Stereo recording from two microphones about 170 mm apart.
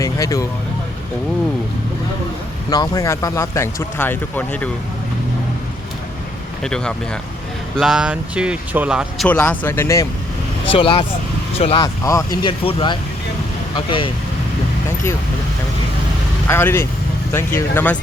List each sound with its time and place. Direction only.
0.0 s vehicle: 20° left (ahead or behind)
2.6 s speech: 20° left (ahead or behind)
6.6 s speech: 5° left (ahead or behind)
9.2 s speech: 10° left (ahead or behind)
10.7 s speech: 30° left (ahead or behind)
12.0 s speech: 20° left (ahead or behind)
16.5 s speech: 15° left (ahead or behind)